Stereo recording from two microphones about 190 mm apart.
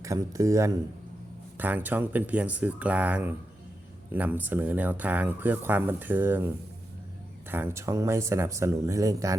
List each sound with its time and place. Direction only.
0.0 s speech: 15° right (ahead or behind)
7.5 s speech: 15° right (ahead or behind)